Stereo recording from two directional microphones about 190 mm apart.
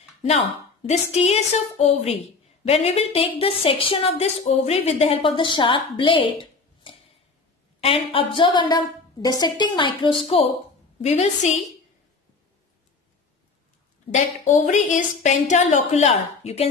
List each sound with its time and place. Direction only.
0.8 s a woman's voice: 35° left (ahead or behind)
14.4 s a woman's voice: 40° left (ahead or behind)